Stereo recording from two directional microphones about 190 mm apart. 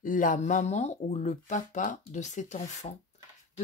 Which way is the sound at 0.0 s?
45° left (ahead or behind).